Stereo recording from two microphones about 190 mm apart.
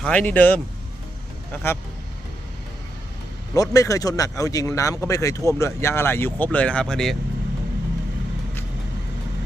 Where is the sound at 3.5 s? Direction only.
20° left (ahead or behind).